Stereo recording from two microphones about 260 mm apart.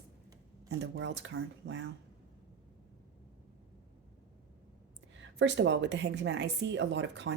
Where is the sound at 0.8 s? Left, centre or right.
Right.